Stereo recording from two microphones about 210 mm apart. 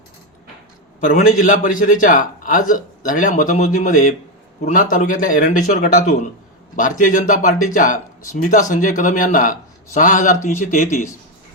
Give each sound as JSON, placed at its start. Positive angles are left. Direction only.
{"t": 1.0, "sound": "speech", "side_deg": 40}